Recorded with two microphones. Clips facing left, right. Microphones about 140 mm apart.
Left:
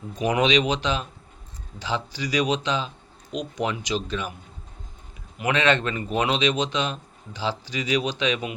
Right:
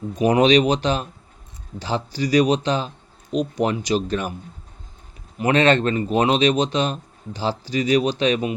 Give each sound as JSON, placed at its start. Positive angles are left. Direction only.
{"t": 0.2, "sound": "speech", "side_deg": -35}
{"t": 5.4, "sound": "speech", "side_deg": -35}